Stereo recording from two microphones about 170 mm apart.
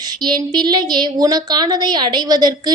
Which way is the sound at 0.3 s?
25° right (ahead or behind).